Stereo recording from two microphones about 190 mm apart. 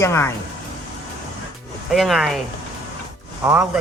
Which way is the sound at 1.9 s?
Centre (ahead or behind).